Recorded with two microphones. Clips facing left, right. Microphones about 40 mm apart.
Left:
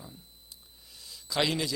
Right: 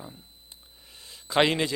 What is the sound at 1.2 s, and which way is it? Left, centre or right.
Speech, right.